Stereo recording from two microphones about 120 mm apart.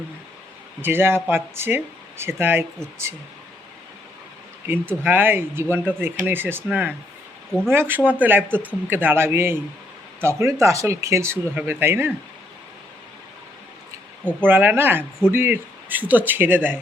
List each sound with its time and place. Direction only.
0.8 s speech: 20° right (ahead or behind)
4.7 s speech: 15° right (ahead or behind)
14.4 s speech: 15° right (ahead or behind)